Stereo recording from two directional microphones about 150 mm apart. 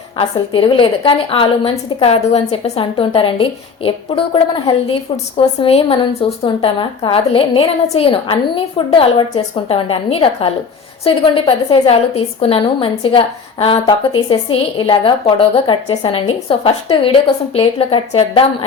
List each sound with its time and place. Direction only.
0.2 s a woman's voice: 35° left (ahead or behind)